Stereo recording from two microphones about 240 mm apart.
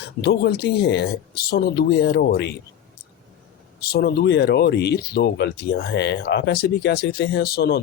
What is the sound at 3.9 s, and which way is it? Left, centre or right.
Speech, left.